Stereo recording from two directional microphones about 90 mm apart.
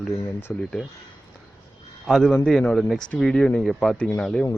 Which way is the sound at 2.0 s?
5° left (ahead or behind).